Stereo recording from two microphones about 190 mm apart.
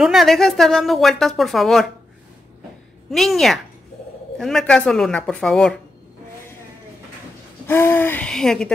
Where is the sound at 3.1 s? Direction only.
Centre (ahead or behind).